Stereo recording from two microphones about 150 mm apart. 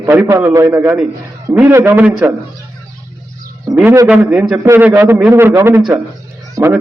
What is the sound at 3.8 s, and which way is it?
A man's voice, 15° right (ahead or behind).